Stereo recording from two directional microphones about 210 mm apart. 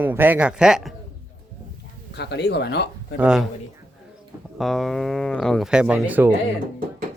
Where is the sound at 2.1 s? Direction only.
55° left (ahead or behind).